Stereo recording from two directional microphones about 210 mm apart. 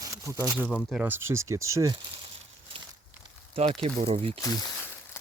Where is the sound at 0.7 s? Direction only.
5° left (ahead or behind).